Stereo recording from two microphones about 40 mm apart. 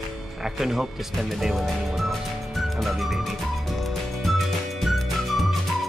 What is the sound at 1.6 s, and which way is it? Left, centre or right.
Music, centre.